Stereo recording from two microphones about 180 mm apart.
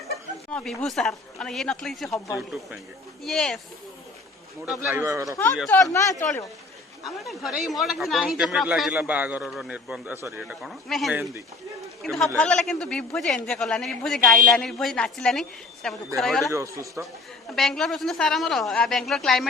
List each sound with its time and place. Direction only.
0.5 s speech: 5° left (ahead or behind)
4.8 s a man's voice: 10° right (ahead or behind)
5.6 s speech: 10° left (ahead or behind)
7.0 s speech: centre (ahead or behind)
16.5 s a man's voice: 15° right (ahead or behind)
17.5 s speech: centre (ahead or behind)